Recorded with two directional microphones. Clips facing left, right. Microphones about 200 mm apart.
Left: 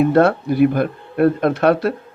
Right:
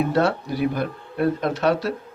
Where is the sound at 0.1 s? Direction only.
55° left (ahead or behind).